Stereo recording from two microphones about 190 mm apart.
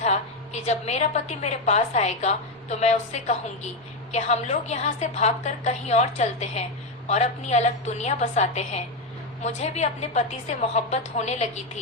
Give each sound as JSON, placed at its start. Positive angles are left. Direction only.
{"t": 0.0, "sound": "a woman's voice", "side_deg": 35}